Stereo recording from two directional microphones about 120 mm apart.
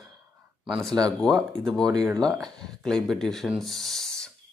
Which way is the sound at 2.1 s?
5° left (ahead or behind).